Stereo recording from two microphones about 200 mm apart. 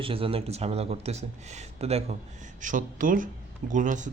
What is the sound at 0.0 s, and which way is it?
Speech, 25° right (ahead or behind).